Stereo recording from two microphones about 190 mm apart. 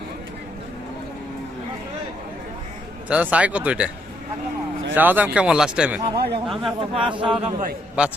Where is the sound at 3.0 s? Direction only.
5° right (ahead or behind).